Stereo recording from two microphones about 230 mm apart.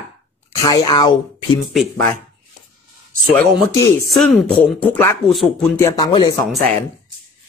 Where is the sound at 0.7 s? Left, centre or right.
Centre.